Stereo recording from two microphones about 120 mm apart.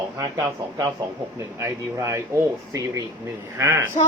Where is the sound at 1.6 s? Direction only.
25° right (ahead or behind).